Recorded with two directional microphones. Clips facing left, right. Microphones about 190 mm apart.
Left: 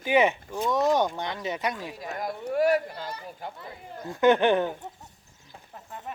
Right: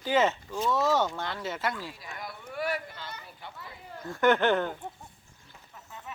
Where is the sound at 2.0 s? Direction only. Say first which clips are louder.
Left 9 dB; 45° left (ahead or behind).